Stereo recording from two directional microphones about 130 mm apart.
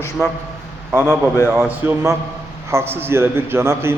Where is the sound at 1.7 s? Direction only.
20° right (ahead or behind).